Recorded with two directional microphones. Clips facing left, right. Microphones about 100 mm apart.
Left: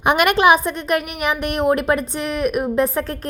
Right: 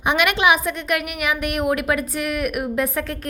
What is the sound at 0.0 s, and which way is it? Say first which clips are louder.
A woman's voice: left 4 dB; 50° left (ahead or behind).